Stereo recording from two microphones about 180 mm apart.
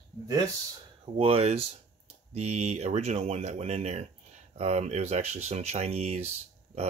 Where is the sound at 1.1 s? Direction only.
30° right (ahead or behind).